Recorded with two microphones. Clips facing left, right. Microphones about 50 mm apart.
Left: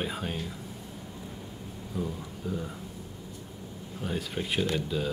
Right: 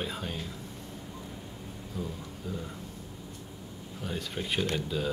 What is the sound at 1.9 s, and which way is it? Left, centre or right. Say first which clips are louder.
Speech: left 4 dB; centre.